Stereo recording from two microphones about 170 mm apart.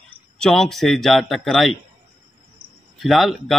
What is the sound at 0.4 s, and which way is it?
A man's voice, centre (ahead or behind).